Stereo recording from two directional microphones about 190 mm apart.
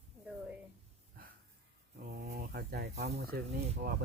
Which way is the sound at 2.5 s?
55° right (ahead or behind).